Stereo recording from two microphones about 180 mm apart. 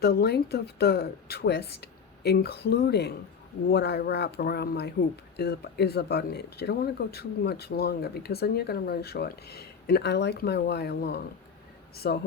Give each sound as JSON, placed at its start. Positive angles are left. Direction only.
{"t": 0.0, "sound": "speech", "side_deg": 60}